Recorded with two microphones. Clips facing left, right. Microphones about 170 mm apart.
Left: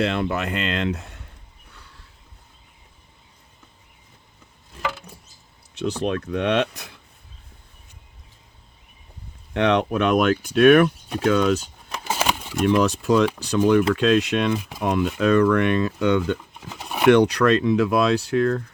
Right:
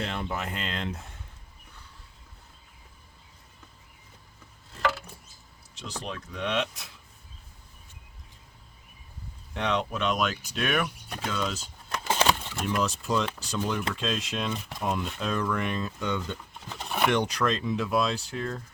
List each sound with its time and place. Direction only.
0.0 s speech: 90° left
6.0 s speech: 65° left (ahead or behind)
9.5 s speech: 70° left (ahead or behind)
11.9 s a sound: 10° left (ahead or behind)
12.6 s speech: 70° left (ahead or behind)
16.6 s a sound: 10° left (ahead or behind)
17.1 s speech: 70° left (ahead or behind)